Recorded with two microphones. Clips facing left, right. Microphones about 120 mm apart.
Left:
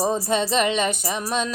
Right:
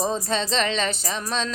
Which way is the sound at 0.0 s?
15° left (ahead or behind).